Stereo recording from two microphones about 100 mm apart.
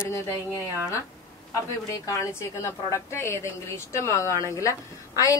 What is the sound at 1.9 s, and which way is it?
A woman's voice, 35° left (ahead or behind).